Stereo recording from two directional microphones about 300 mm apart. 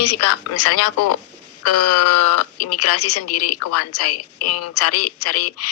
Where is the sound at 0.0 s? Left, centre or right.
Left.